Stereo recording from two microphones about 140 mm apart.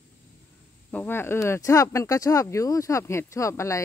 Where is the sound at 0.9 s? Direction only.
15° left (ahead or behind).